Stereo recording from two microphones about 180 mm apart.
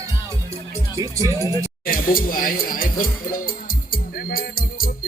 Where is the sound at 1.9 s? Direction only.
50° left (ahead or behind).